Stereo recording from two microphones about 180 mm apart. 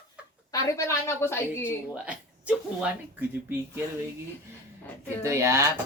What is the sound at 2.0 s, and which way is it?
Speech, 5° right (ahead or behind).